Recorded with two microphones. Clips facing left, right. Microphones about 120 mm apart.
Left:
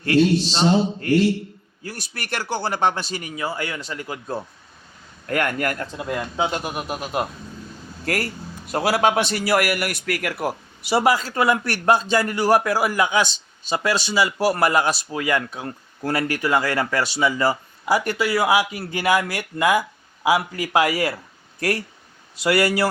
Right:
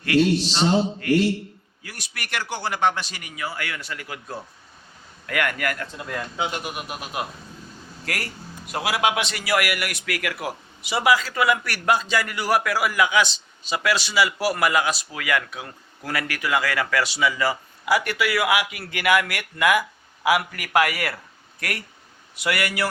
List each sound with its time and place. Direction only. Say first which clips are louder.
0.0 s speech: left 2 dB; 30° left (ahead or behind)
5.2 s speech: left 3 dB; 40° left (ahead or behind)
6.0 s speech: left 5 dB; 15° left (ahead or behind)
6.4 s a man's voice: left 4 dB; 35° left (ahead or behind)